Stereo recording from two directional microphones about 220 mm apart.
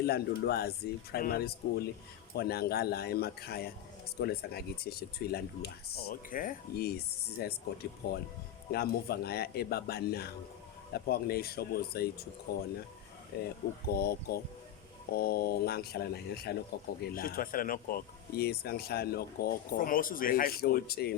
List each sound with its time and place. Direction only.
0.0 s speech: 45° left (ahead or behind)